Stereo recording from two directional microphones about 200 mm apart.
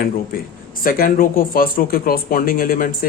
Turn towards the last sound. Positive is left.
turn(degrees=45)  # may be behind; listen again after turning